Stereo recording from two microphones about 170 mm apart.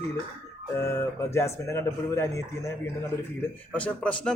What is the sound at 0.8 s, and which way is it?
Speech, 15° left (ahead or behind).